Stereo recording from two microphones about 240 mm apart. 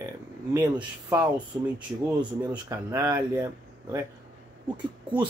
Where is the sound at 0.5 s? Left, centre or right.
Centre.